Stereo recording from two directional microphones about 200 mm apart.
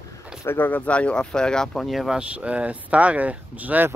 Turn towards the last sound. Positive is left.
turn(degrees=-10)  # may be behind; listen again after turning